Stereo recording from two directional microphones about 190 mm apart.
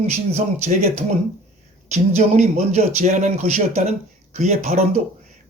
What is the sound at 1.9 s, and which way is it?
Speech, 35° right (ahead or behind).